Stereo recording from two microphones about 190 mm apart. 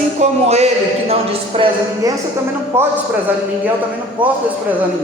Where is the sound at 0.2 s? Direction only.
35° right (ahead or behind).